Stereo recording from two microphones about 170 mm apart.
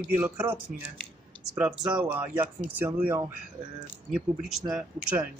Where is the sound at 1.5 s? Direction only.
5° right (ahead or behind).